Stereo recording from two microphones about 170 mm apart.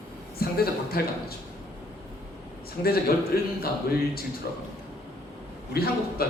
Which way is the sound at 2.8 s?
65° left (ahead or behind).